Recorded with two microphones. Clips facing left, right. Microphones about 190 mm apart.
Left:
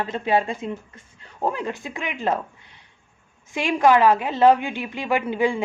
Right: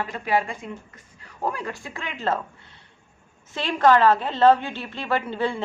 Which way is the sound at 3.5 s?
10° left (ahead or behind).